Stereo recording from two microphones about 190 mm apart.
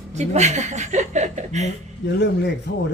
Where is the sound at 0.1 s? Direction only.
35° right (ahead or behind).